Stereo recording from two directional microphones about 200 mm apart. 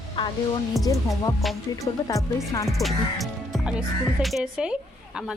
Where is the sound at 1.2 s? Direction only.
15° left (ahead or behind).